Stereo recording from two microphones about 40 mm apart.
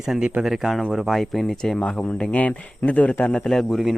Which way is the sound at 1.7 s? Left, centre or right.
Left.